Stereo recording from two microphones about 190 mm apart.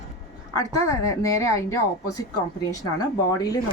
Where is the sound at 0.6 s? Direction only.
15° left (ahead or behind).